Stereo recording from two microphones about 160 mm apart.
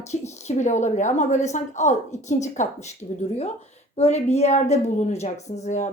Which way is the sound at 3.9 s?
40° left (ahead or behind).